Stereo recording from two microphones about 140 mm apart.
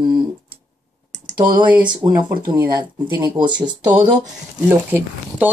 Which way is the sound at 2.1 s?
30° right (ahead or behind).